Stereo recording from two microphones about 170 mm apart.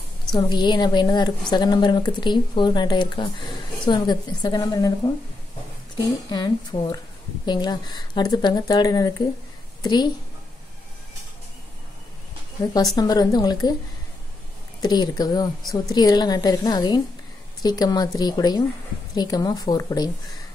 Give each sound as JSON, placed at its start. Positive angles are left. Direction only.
{"t": 0.3, "sound": "speech", "side_deg": 25}
{"t": 5.9, "sound": "a woman's voice", "side_deg": 25}
{"t": 12.9, "sound": "speech", "side_deg": 25}
{"t": 14.8, "sound": "speech", "side_deg": 25}